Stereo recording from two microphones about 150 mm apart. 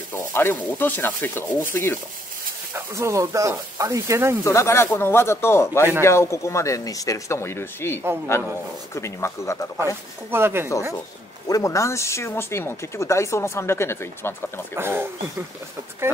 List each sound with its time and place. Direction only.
0.1 s speech: 15° left (ahead or behind)
2.7 s speech: 20° right (ahead or behind)
4.5 s speech: 20° left (ahead or behind)
10.3 s speech: 15° right (ahead or behind)
11.4 s speech: 20° left (ahead or behind)
14.8 s speech: 15° right (ahead or behind)